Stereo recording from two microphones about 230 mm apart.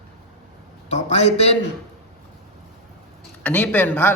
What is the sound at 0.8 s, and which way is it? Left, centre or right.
Speech, left.